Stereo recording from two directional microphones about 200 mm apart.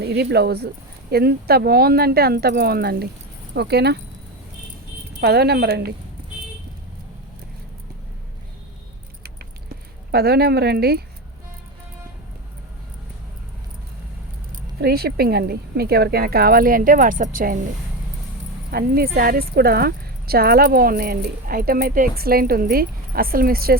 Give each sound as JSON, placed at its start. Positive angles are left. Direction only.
{"t": 0.0, "sound": "speech", "side_deg": -55}
{"t": 5.2, "sound": "speech", "side_deg": -55}
{"t": 10.1, "sound": "speech", "side_deg": -50}
{"t": 14.5, "sound": "speech", "side_deg": -50}
{"t": 18.7, "sound": "speech", "side_deg": -50}